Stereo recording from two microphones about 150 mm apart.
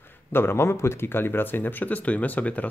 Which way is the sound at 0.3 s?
15° left (ahead or behind).